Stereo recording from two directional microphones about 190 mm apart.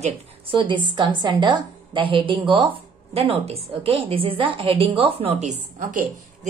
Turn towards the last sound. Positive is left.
turn(degrees=-45)  # may be behind; listen again after turning